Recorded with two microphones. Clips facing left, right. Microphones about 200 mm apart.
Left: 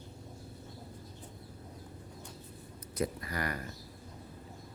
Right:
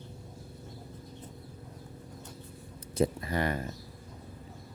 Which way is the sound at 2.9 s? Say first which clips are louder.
Right 6 dB; 25° right (ahead or behind).